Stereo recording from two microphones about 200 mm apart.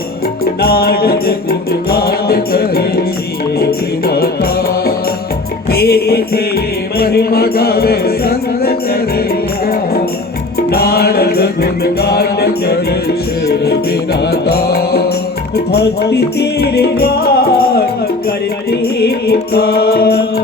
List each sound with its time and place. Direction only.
0.6 s music: 50° left (ahead or behind)
5.7 s music: 50° left (ahead or behind)
10.7 s music: 50° left (ahead or behind)